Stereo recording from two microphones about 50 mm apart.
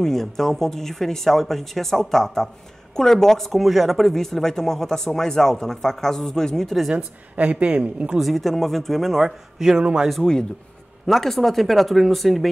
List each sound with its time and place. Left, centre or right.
0.0 s speech: centre
7.3 s a woman's voice: right
8.2 s a man's voice: centre
11.1 s a man's voice: centre